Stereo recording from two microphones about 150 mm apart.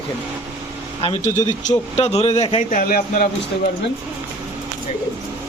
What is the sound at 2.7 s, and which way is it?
Speech, 75° left (ahead or behind).